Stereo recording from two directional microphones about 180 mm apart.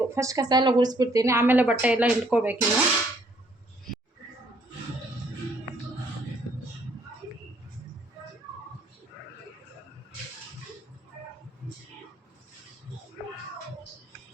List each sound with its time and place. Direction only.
0.0 s speech: 15° right (ahead or behind)